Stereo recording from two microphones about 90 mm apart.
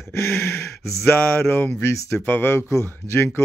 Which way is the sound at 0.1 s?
30° left (ahead or behind).